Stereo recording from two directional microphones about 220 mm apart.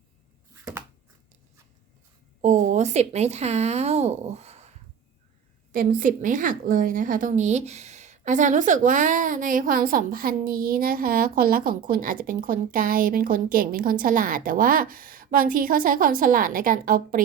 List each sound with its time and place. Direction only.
2.4 s speech: 35° right (ahead or behind)
5.7 s a woman's voice: 40° right (ahead or behind)